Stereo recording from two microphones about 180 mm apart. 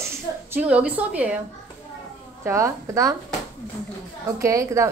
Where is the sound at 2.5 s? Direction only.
15° right (ahead or behind).